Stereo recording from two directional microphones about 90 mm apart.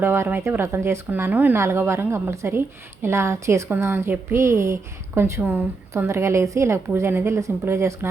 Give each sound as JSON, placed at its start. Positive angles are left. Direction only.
{"t": 0.0, "sound": "speech", "side_deg": -25}